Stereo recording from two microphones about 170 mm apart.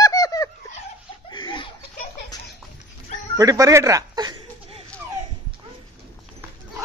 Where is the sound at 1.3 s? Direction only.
30° left (ahead or behind).